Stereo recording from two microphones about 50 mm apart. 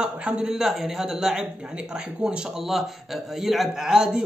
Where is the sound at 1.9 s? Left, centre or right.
Right.